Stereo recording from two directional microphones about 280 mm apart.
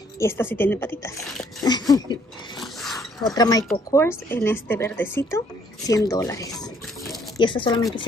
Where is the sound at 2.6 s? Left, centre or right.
Centre.